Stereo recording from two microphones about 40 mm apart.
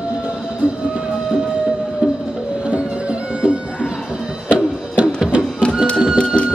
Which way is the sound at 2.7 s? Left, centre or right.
Right.